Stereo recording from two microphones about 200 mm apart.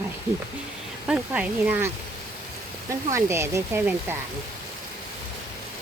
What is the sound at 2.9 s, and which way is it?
Speech, 15° right (ahead or behind).